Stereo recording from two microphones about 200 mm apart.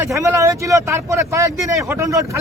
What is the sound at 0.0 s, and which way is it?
Speech, 15° right (ahead or behind).